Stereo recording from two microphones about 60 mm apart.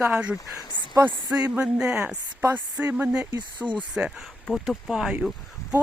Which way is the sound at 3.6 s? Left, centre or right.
Centre.